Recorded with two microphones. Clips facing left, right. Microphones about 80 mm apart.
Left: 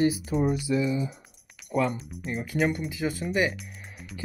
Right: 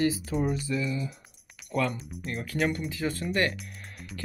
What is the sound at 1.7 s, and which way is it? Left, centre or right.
Speech, centre.